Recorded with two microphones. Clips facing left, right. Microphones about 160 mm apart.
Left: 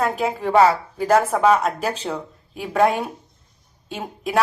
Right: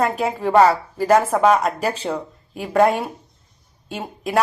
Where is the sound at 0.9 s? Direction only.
5° right (ahead or behind).